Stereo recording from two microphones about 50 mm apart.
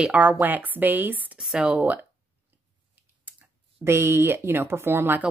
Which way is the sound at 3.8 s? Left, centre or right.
Right.